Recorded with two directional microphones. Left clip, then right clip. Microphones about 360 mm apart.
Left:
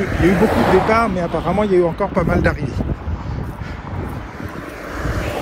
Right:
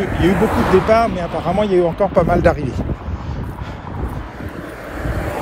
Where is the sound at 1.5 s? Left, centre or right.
Centre.